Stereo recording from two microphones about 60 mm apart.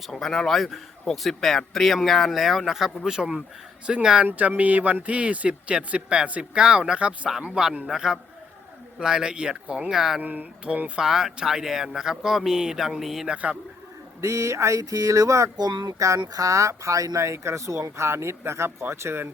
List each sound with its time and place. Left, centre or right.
0.1 s a man's voice: centre
4.3 s a man's voice: right; by 10.2 s centre
10.2 s speech: right
11.0 s speech: centre
13.2 s speech: right
14.2 s speech: right
17.2 s speech: right